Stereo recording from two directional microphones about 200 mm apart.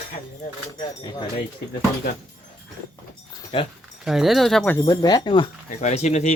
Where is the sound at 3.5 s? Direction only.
30° left (ahead or behind).